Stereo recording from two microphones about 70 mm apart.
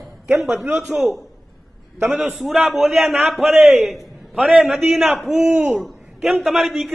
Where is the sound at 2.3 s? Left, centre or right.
Centre.